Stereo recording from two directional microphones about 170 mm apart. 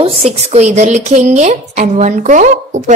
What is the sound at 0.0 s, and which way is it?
A woman's voice, 35° right (ahead or behind).